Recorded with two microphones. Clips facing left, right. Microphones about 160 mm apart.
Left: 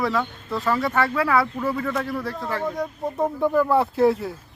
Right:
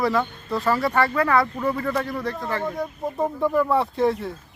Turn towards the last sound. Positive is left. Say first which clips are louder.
# left 3 dB
turn(degrees=5)  # may be behind; listen again after turning